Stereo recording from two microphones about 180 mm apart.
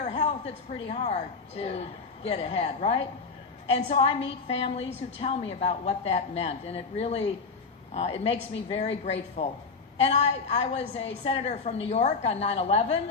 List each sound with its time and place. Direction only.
0.0 s a woman's voice: 35° left (ahead or behind)